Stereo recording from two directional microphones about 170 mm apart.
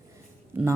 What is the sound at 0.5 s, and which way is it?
Speech, 15° right (ahead or behind).